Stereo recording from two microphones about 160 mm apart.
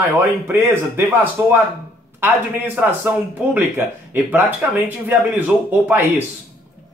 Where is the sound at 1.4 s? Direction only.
15° right (ahead or behind).